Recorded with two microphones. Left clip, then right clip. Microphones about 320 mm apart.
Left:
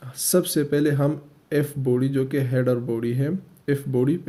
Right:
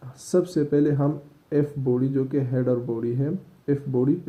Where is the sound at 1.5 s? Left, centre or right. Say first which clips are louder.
Left 1 dB; left.